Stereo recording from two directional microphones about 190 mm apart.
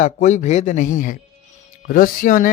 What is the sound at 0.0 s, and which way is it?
Speech, 40° left (ahead or behind).